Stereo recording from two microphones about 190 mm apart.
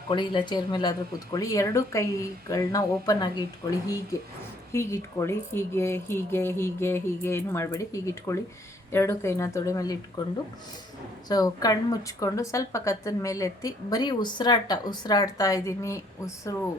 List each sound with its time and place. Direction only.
0.1 s a woman's voice: 25° left (ahead or behind)
11.3 s a woman's voice: 20° left (ahead or behind)